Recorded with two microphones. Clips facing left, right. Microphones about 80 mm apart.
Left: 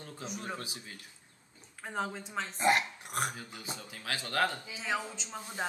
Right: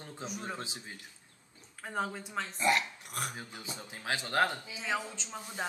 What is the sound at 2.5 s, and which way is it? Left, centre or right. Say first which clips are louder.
Speech: left 2 dB; left.